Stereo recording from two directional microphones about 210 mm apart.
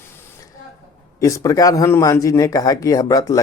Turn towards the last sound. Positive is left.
turn(degrees=15)  # may be behind; listen again after turning